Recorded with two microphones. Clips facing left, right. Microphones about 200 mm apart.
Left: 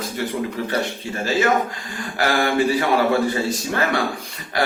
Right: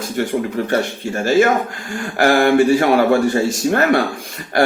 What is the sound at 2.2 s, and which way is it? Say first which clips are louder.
Speech: right 7 dB; 50° right (ahead or behind).